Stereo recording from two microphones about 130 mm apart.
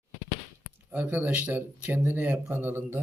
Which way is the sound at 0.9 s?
15° right (ahead or behind).